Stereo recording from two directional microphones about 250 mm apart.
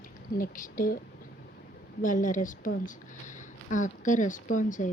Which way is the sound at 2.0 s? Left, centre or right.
Left.